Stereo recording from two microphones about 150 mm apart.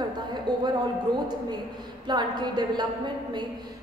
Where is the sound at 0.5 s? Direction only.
30° right (ahead or behind).